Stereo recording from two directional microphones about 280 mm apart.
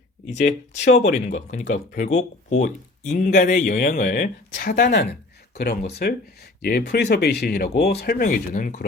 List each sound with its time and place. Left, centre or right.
0.4 s speech: left